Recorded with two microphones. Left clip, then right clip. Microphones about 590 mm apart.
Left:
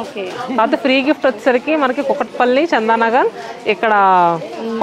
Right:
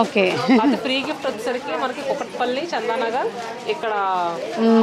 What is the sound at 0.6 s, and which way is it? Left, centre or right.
A woman's voice, left.